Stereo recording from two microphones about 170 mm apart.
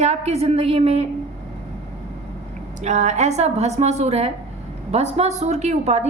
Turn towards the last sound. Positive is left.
turn(degrees=-40)  # may be behind; listen again after turning